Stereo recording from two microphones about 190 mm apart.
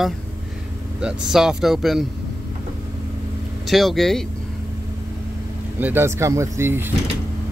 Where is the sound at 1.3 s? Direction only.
5° right (ahead or behind).